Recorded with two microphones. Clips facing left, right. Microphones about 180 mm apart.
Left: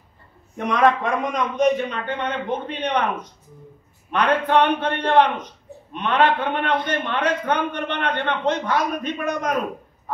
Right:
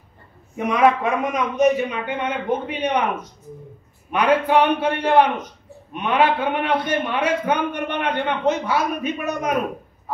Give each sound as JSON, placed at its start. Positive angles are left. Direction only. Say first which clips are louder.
{"t": 0.6, "sound": "a man's voice", "louder": "right 1 dB", "side_deg": -10}